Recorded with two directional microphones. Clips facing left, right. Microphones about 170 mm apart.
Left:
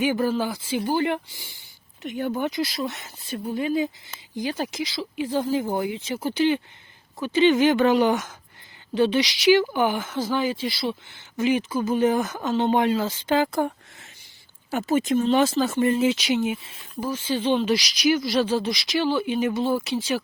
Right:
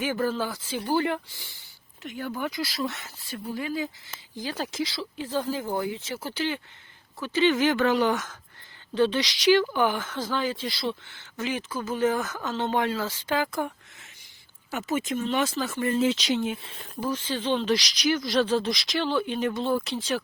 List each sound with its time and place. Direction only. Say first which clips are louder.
0.0 s speech: left 4 dB; 15° left (ahead or behind)
16.0 s speech: left 2 dB; 10° left (ahead or behind)